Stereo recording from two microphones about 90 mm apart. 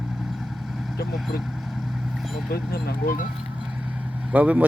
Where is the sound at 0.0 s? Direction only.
5° right (ahead or behind).